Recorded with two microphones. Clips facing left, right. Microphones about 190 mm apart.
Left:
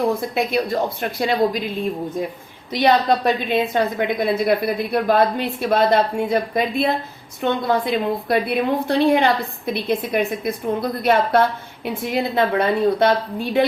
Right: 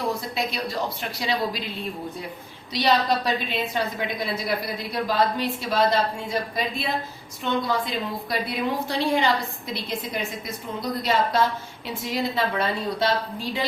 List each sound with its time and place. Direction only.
0.1 s speech: 55° left (ahead or behind)
2.7 s a woman's voice: 55° left (ahead or behind)